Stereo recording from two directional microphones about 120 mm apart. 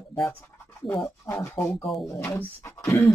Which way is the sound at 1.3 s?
25° left (ahead or behind).